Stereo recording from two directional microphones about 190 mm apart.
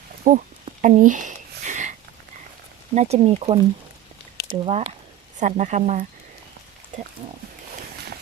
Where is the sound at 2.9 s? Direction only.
35° right (ahead or behind).